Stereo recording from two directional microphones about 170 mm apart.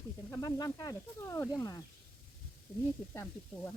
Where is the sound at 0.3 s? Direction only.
20° left (ahead or behind).